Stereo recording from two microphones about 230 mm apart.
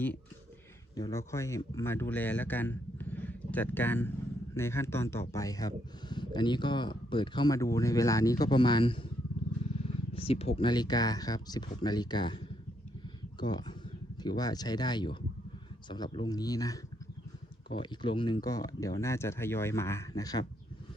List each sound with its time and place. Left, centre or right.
0.9 s speech: centre
10.2 s speech: left